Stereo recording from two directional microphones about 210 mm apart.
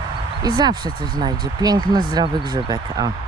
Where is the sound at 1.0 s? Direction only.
20° right (ahead or behind).